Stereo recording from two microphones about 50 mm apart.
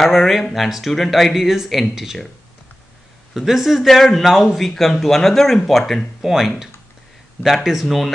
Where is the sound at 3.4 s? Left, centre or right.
Centre.